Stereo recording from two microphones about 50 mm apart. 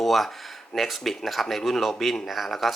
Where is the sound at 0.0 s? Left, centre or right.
Centre.